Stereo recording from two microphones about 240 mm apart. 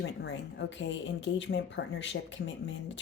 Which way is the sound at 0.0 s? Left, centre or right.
Left.